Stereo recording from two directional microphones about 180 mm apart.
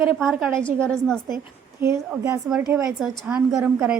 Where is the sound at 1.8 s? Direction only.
15° right (ahead or behind).